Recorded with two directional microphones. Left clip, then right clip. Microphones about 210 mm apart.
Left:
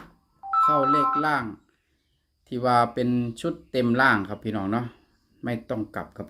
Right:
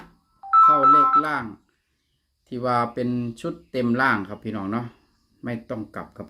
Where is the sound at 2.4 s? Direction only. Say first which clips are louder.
Left 2 dB; 15° left (ahead or behind).